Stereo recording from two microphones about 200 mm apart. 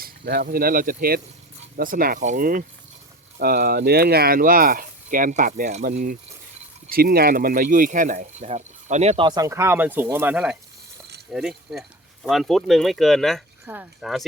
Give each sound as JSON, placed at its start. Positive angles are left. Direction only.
{"t": 0.0, "sound": "speech", "side_deg": -50}
{"t": 9.2, "sound": "speech", "side_deg": -20}